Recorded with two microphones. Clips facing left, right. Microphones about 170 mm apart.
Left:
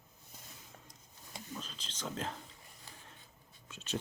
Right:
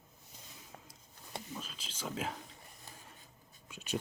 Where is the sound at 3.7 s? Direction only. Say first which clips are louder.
Right 2 dB; 10° right (ahead or behind).